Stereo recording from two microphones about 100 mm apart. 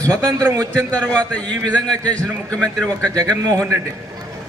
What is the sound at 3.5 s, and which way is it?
Speech, 25° right (ahead or behind).